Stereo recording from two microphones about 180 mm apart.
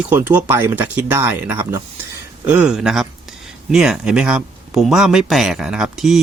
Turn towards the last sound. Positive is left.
turn(degrees=0)  # may be behind; listen again after turning